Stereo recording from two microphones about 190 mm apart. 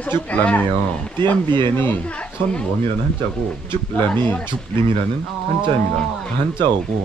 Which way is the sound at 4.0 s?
10° left (ahead or behind).